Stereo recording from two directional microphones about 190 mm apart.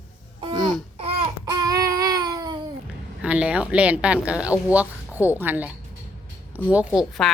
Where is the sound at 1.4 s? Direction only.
20° right (ahead or behind).